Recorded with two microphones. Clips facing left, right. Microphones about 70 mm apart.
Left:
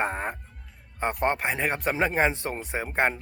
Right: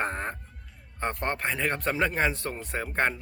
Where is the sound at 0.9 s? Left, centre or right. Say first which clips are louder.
Left 4 dB; centre.